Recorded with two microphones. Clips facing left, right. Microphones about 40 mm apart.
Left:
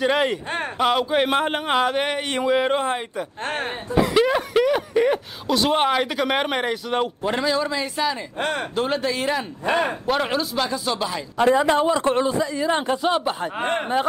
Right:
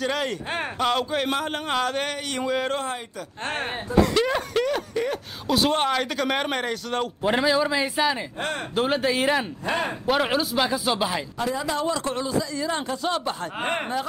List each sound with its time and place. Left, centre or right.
0.0 s a man's voice: left
3.4 s a man's voice: centre
3.9 s a man's voice: centre
7.2 s a man's voice: centre
8.4 s speech: left
8.7 s a man's voice: centre
11.3 s speech: left
11.8 s a man's voice: left